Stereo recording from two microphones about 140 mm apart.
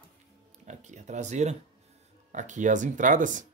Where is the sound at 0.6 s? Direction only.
55° right (ahead or behind).